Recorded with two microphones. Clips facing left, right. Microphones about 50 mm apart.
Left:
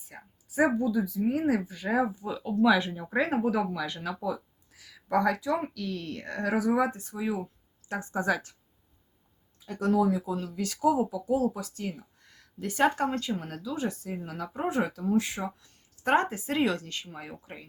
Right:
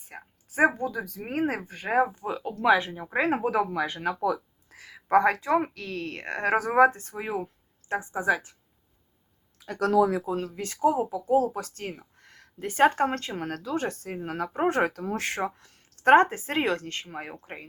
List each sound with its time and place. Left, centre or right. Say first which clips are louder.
0.1 s speech: right 3 dB; right
2.6 s speech: right 3 dB; right
4.2 s a sound: right 5 dB; right
5.1 s speech: right 5 dB; right
7.9 s a woman's voice: right 3 dB; centre
9.6 s speech: right 4 dB; right
10.2 s speech: right 2 dB; right
13.3 s speech: right 3 dB; right
15.0 s speech: left 1 dB; right
16.0 s speech: right 7 dB; right